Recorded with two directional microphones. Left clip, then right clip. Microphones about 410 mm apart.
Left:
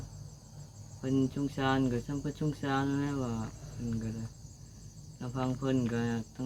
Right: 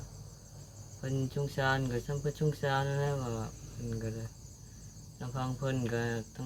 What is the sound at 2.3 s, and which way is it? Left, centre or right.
Cricket, right.